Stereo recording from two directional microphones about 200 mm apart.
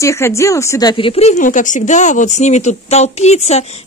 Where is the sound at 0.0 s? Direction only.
15° left (ahead or behind).